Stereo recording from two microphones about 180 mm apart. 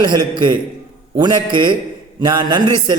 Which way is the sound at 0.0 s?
25° right (ahead or behind).